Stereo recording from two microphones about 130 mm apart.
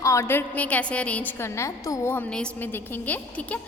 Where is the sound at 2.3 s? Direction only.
10° left (ahead or behind).